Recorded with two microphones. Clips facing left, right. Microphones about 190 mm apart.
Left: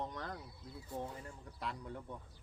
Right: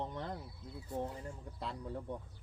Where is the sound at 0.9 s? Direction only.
10° right (ahead or behind).